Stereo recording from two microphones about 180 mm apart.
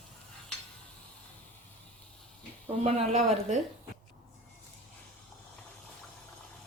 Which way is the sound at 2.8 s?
35° right (ahead or behind).